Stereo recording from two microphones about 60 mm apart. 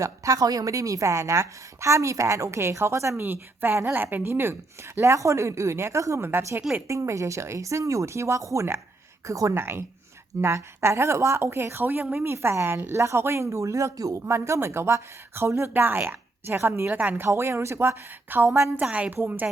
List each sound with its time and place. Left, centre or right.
0.0 s a woman's voice: right
3.2 s a woman's voice: right
4.9 s a woman's voice: right
9.6 s speech: right
11.8 s a woman's voice: right
12.1 s a woman's voice: right
14.3 s speech: right
15.7 s speech: right
16.6 s speech: right
16.9 s speech: right
17.3 s speech: right
17.7 s a woman's voice: right
18.8 s speech: right
19.1 s a woman's voice: right